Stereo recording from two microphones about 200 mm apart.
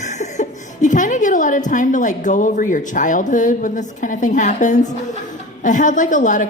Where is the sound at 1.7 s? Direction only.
40° left (ahead or behind).